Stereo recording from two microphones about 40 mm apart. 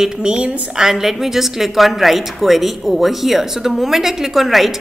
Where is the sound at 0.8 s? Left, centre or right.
Centre.